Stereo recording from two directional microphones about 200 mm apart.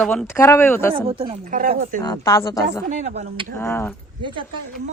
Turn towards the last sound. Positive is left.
turn(degrees=10)  # may be behind; listen again after turning